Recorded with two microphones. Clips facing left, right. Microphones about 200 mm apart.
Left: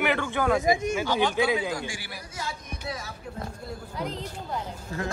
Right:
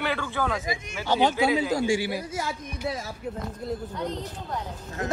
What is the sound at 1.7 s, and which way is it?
Speech, 25° right (ahead or behind).